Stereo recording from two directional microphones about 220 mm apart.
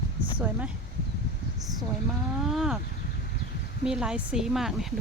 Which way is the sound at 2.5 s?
Centre (ahead or behind).